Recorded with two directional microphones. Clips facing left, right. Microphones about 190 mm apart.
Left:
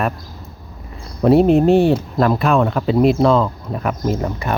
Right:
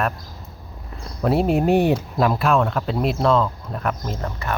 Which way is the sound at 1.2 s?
Centre (ahead or behind).